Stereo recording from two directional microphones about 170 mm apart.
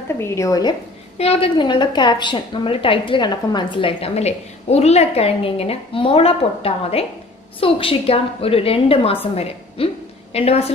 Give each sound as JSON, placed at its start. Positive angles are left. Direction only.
{"t": 0.2, "sound": "a woman's voice", "side_deg": 15}
{"t": 1.1, "sound": "a woman's voice", "side_deg": 35}